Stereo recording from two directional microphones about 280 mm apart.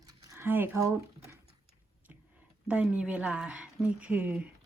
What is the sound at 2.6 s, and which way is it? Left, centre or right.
Speech, centre.